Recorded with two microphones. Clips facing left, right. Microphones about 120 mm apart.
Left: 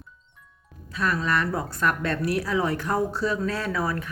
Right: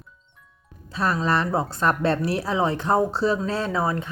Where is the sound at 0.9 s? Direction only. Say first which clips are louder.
Right 3 dB; 30° right (ahead or behind).